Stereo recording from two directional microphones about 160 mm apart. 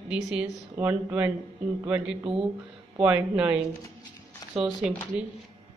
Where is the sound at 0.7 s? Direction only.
15° right (ahead or behind).